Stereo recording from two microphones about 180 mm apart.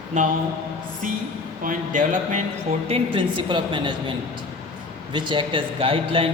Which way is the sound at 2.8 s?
30° right (ahead or behind).